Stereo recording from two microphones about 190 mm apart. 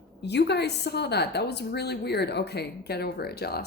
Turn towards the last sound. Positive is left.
turn(degrees=55)  # may be behind; listen again after turning